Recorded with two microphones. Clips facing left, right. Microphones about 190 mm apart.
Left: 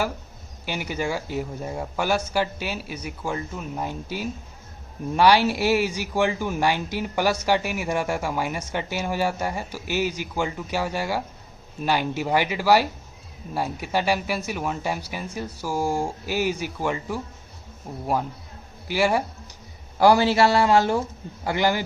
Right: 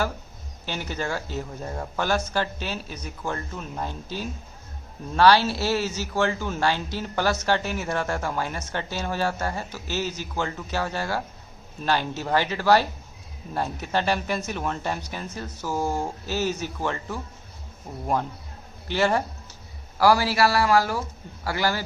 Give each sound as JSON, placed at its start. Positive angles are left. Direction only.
{"t": 0.6, "sound": "speech", "side_deg": 10}
{"t": 20.0, "sound": "a man's voice", "side_deg": 25}